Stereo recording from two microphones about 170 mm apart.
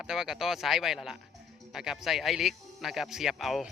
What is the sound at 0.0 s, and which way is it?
Speech, 5° right (ahead or behind).